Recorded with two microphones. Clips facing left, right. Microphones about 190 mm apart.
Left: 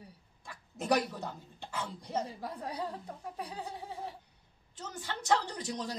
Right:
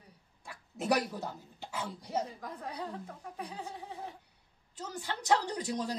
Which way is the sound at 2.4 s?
35° left (ahead or behind).